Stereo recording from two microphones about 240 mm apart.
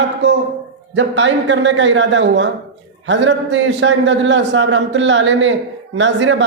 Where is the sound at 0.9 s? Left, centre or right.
Right.